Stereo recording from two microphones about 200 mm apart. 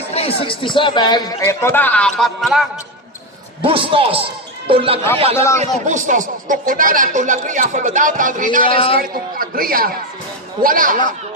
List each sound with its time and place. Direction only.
0.1 s speech: 30° left (ahead or behind)
1.4 s speech: 10° left (ahead or behind)
3.6 s a man's voice: 25° right (ahead or behind)
5.5 s speech: 40° right (ahead or behind)
8.6 s speech: 25° left (ahead or behind)
9.0 s a man's voice: 45° right (ahead or behind)